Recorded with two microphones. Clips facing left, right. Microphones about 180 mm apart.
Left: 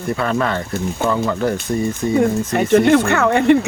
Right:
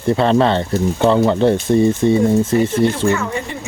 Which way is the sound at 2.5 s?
65° left (ahead or behind).